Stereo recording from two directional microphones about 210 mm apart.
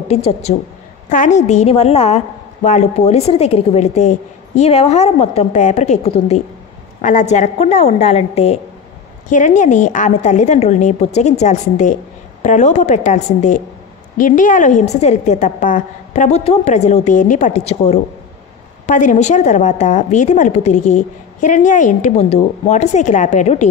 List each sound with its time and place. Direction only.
0.1 s a woman's voice: 30° left (ahead or behind)